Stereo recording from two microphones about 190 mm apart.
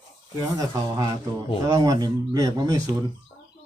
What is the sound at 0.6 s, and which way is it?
A man's voice, 20° right (ahead or behind).